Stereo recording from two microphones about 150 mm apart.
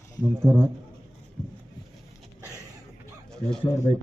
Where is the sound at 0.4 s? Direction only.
15° right (ahead or behind).